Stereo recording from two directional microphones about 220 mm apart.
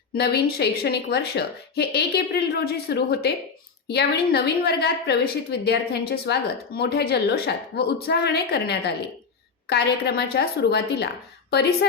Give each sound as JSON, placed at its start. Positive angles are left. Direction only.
{"t": 0.1, "sound": "speech", "side_deg": 45}